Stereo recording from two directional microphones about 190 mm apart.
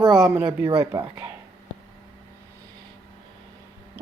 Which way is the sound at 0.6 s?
20° right (ahead or behind).